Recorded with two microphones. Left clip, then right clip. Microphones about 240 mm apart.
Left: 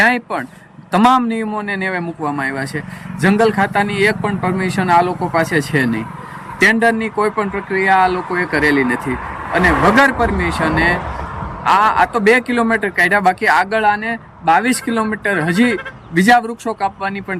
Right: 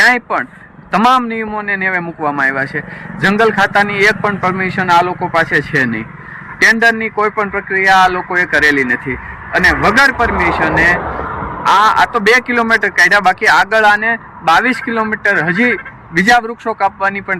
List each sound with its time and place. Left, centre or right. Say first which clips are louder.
0.0 s a man's voice: right 4 dB; centre
11.0 s vehicle: right 5 dB; right
11.6 s a man's voice: right 3 dB; centre